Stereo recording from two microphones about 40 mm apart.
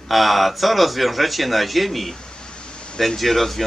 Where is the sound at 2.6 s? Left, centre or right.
Left.